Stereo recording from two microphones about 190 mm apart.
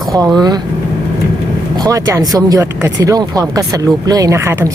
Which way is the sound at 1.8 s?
15° right (ahead or behind).